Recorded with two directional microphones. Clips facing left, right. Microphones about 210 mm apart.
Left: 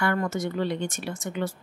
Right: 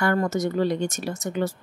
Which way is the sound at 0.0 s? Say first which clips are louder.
Right 4 dB; 40° right (ahead or behind).